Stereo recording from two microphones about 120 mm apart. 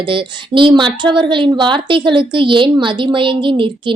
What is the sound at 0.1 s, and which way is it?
Speech, 45° right (ahead or behind).